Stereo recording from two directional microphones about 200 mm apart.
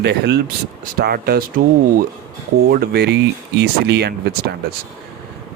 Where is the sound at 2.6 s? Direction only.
50° right (ahead or behind).